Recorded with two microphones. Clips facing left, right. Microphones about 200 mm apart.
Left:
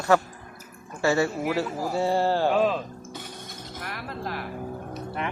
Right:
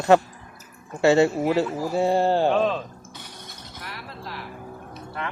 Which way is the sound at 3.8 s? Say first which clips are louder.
Left 4 dB; 50° left (ahead or behind).